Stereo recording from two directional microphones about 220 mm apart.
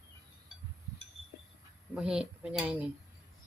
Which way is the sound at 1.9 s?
5° right (ahead or behind).